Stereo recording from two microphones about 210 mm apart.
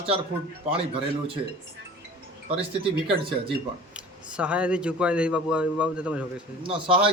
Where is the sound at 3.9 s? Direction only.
5° right (ahead or behind).